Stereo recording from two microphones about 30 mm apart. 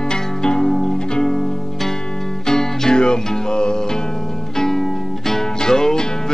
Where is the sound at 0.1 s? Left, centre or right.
Left.